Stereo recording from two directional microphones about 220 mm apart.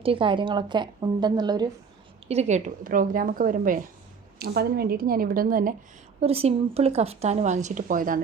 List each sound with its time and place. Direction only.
0.0 s speech: 25° right (ahead or behind)
2.2 s a woman's voice: 30° right (ahead or behind)
6.1 s speech: 25° right (ahead or behind)